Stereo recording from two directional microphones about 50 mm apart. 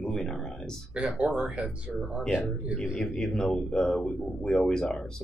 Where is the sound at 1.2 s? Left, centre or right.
Centre.